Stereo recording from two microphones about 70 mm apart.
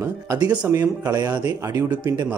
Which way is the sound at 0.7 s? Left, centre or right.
Right.